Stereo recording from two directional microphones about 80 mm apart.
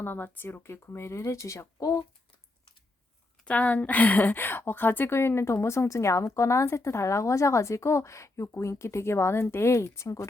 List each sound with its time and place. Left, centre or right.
0.0 s a woman's voice: left
3.4 s a woman's voice: centre; by 10.2 s left